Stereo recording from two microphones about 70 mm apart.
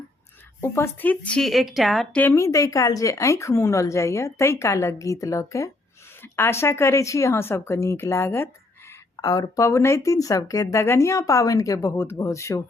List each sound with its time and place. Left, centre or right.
0.9 s a woman's voice: left
1.4 s a woman's voice: centre
2.3 s a woman's voice: left
6.2 s speech: left
9.2 s speech: left
9.6 s a woman's voice: left